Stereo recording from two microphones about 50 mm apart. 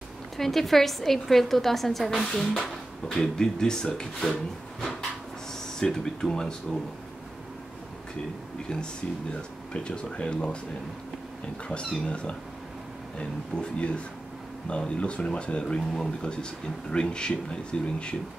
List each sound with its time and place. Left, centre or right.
0.4 s a woman's voice: centre
9.8 s speech: left
12.1 s speech: left